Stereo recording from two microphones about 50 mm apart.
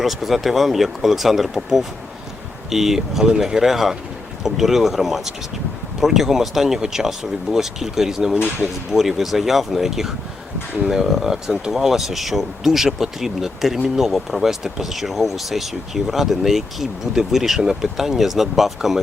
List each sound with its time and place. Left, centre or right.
0.0 s speech: centre